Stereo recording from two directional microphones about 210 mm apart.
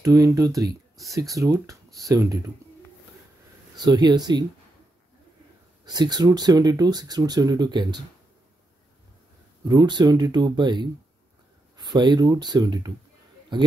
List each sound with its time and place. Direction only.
0.0 s speech: 15° right (ahead or behind)
0.9 s speech: centre (ahead or behind)
1.3 s speech: 15° right (ahead or behind)
3.7 s speech: 20° right (ahead or behind)
5.9 s speech: 20° right (ahead or behind)
9.7 s speech: 20° right (ahead or behind)